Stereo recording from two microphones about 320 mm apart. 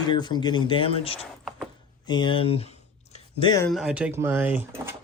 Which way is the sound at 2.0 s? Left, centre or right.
Centre.